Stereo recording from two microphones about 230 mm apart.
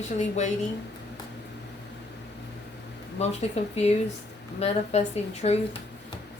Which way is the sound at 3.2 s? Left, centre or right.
Left.